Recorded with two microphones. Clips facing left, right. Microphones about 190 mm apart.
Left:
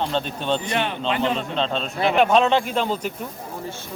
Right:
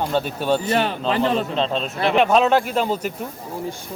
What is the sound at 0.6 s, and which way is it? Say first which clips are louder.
Speech: right 4 dB; 40° right (ahead or behind).